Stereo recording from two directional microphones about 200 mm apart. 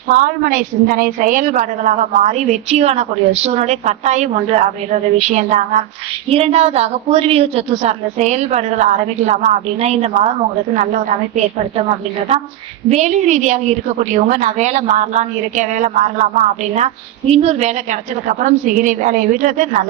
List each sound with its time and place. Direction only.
0.1 s a woman's voice: 40° right (ahead or behind)
12.9 s a woman's voice: 35° right (ahead or behind)